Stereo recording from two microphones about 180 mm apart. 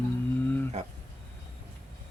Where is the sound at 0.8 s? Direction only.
40° right (ahead or behind).